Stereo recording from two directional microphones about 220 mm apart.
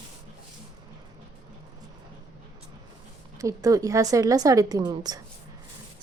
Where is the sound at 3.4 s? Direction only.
15° right (ahead or behind).